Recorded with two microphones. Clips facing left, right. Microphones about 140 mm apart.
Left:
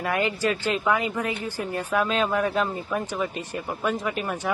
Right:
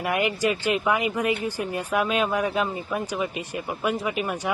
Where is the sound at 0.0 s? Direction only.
15° right (ahead or behind).